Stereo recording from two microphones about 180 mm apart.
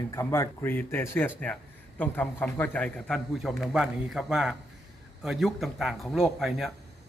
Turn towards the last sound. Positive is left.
turn(degrees=0)  # may be behind; listen again after turning